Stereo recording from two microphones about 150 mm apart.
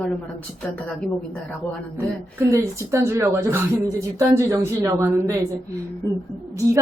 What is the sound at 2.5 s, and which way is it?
Speech, 20° right (ahead or behind).